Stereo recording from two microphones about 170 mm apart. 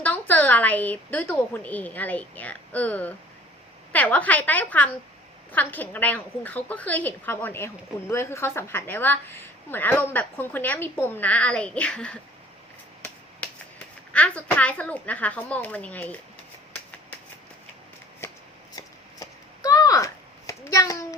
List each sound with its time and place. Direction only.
0.0 s a woman's voice: 10° left (ahead or behind)
14.1 s a woman's voice: 10° left (ahead or behind)
18.2 s shuffling cards: 15° left (ahead or behind)
18.8 s a sound: 20° left (ahead or behind)